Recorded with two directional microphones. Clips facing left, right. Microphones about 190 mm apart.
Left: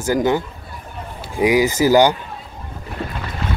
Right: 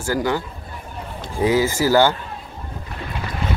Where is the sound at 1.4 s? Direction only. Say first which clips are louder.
Left 3 dB; 15° left (ahead or behind).